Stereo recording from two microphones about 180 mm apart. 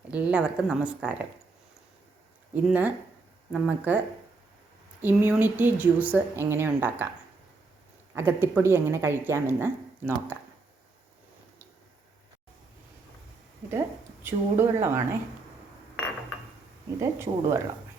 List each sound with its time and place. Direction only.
0.1 s a woman's voice: 5° right (ahead or behind)
2.6 s a woman's voice: 10° right (ahead or behind)
5.0 s a woman's voice: 10° right (ahead or behind)
8.1 s a woman's voice: 10° right (ahead or behind)
13.7 s a woman's voice: 15° right (ahead or behind)
17.0 s a woman's voice: 15° right (ahead or behind)